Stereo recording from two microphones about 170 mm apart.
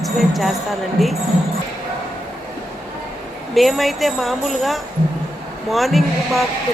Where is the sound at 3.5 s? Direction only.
Centre (ahead or behind).